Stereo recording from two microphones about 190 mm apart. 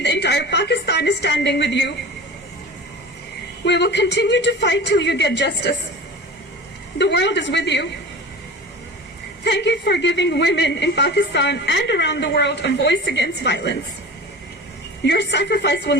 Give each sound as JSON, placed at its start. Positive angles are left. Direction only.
{"t": 0.0, "sound": "a woman's voice", "side_deg": 65}
{"t": 3.6, "sound": "a man's voice", "side_deg": 65}
{"t": 7.0, "sound": "a man's voice", "side_deg": 65}
{"t": 9.4, "sound": "a man's voice", "side_deg": 65}
{"t": 15.0, "sound": "a man's voice", "side_deg": 65}